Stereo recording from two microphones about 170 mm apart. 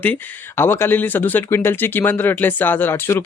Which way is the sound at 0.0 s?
10° left (ahead or behind).